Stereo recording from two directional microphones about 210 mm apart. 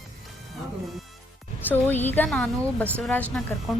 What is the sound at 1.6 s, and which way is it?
Speech, 10° left (ahead or behind).